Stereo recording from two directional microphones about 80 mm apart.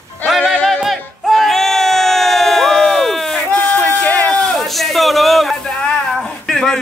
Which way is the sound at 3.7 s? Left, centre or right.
Centre.